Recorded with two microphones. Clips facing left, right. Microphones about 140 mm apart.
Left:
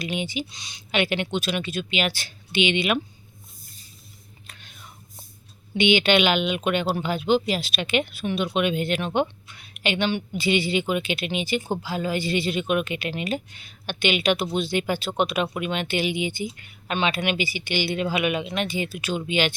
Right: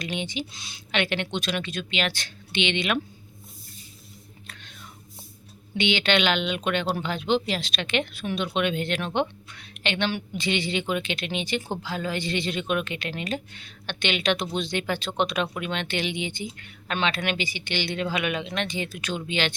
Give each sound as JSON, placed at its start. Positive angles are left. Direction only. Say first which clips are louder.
{"t": 0.0, "sound": "speech", "louder": "left 2 dB", "side_deg": 5}
{"t": 5.7, "sound": "speech", "louder": "left 4 dB", "side_deg": 10}